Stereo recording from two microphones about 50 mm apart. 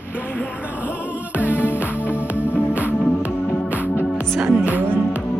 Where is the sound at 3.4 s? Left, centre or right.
Left.